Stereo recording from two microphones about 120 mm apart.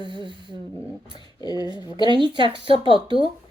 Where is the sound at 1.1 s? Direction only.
35° left (ahead or behind).